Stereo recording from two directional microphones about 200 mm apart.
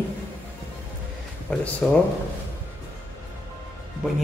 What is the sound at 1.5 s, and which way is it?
Speech, 5° left (ahead or behind).